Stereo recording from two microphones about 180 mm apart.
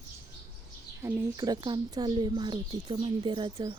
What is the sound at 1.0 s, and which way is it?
A woman's voice, 15° right (ahead or behind).